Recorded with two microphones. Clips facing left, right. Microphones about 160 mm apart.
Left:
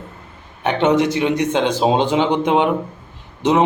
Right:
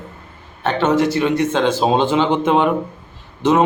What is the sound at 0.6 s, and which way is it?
A man's voice, 15° left (ahead or behind).